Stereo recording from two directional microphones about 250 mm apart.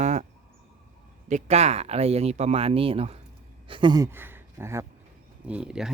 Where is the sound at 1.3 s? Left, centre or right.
Right.